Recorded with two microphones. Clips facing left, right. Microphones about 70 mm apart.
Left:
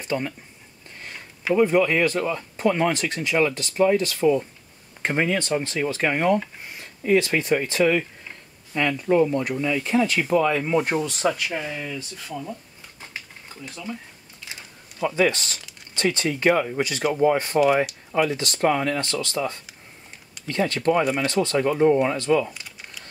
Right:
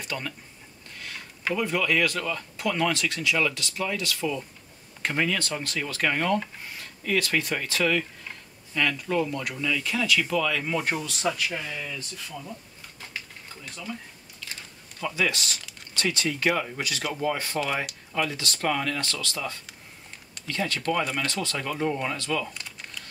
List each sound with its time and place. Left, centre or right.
0.0 s speech: left
0.9 s a sound: left
1.5 s speech: left
14.4 s a sound: centre
15.0 s speech: left
21.0 s speech: centre
21.3 s speech: left
22.5 s typing: centre